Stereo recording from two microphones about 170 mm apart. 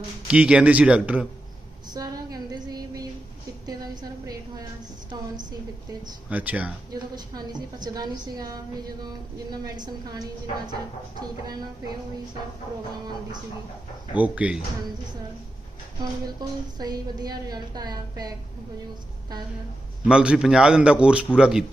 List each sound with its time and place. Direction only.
0.3 s speech: 5° right (ahead or behind)
1.9 s a sound: 25° right (ahead or behind)
6.3 s speech: 10° right (ahead or behind)
6.9 s a woman's voice: 25° right (ahead or behind)
14.1 s speech: 10° right (ahead or behind)
16.2 s a woman's voice: 25° right (ahead or behind)
20.1 s a man's voice: 5° right (ahead or behind)